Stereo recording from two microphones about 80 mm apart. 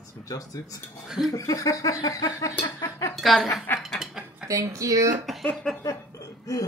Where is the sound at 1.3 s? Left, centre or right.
Left.